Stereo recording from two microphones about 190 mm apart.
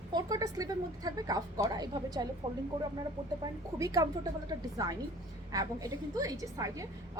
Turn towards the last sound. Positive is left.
turn(degrees=-20)  # may be behind; listen again after turning